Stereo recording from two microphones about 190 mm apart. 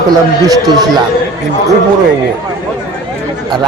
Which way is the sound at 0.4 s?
20° right (ahead or behind).